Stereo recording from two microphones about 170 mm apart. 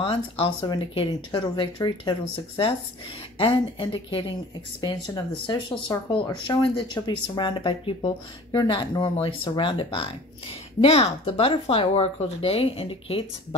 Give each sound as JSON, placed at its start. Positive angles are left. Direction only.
{"t": 0.0, "sound": "speech", "side_deg": 35}